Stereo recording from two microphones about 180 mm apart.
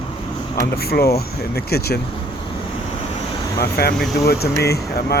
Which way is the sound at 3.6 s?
60° left (ahead or behind).